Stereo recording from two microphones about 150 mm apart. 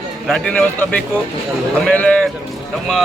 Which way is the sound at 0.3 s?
5° left (ahead or behind).